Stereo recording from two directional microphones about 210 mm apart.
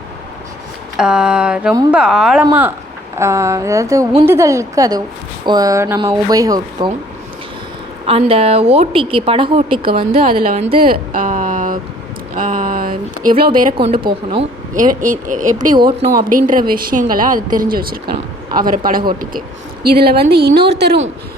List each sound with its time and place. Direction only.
0.9 s speech: 5° right (ahead or behind)
3.2 s a woman's voice: 15° right (ahead or behind)
8.0 s a woman's voice: 30° right (ahead or behind)
10.2 s speech: 40° right (ahead or behind)
10.8 s a sound: 45° right (ahead or behind)
13.9 s a woman's voice: 25° right (ahead or behind)
14.8 s speech: 40° right (ahead or behind)
15.8 s a woman's voice: 20° right (ahead or behind)
16.1 s speech: 40° right (ahead or behind)
19.8 s a woman's voice: 45° right (ahead or behind)